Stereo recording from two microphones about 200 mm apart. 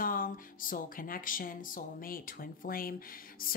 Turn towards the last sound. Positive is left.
turn(degrees=45)  # may be behind; listen again after turning